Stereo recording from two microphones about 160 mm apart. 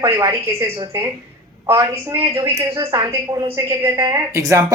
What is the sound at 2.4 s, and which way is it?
Speech, 20° right (ahead or behind).